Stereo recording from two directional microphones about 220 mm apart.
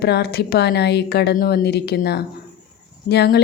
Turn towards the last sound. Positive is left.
turn(degrees=50)  # may be behind; listen again after turning